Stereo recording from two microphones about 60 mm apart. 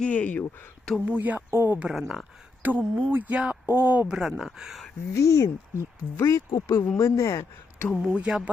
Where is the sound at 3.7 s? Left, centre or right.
Right.